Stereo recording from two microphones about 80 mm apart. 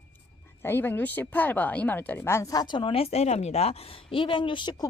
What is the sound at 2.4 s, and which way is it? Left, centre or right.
Speech, left.